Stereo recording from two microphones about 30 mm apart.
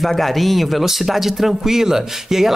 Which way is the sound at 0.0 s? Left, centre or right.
Centre.